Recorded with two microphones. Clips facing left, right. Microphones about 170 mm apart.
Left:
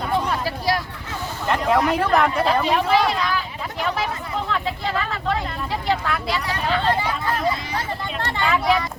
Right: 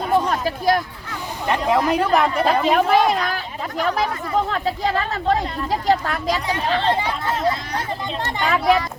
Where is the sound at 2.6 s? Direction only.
45° right (ahead or behind).